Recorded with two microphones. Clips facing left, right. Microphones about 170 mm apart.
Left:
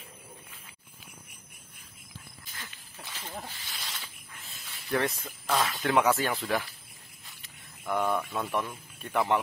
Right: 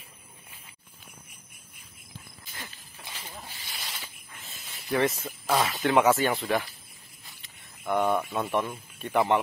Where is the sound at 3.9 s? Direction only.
5° right (ahead or behind).